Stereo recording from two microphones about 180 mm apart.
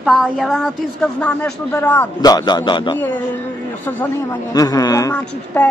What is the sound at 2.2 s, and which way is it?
A man's voice, 20° left (ahead or behind).